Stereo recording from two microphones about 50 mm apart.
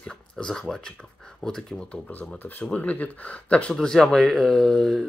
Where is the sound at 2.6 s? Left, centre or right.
Left.